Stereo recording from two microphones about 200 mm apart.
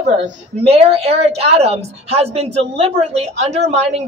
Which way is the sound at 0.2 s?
30° right (ahead or behind).